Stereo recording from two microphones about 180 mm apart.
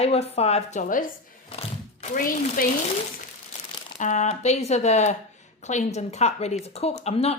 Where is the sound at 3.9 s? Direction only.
40° left (ahead or behind).